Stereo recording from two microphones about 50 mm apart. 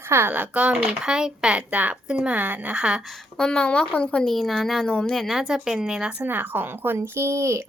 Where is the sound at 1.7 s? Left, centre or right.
Right.